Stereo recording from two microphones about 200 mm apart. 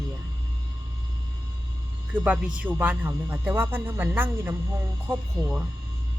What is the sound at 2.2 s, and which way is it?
Speech, 5° right (ahead or behind).